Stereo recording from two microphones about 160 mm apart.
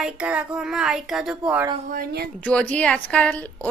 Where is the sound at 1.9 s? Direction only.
75° right (ahead or behind).